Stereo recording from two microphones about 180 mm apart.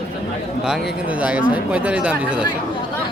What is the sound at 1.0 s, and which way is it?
Speech, 5° right (ahead or behind).